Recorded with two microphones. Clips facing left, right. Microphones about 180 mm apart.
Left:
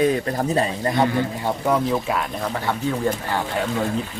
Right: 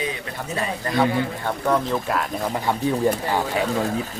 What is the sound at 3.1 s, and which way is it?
Speech, 15° right (ahead or behind).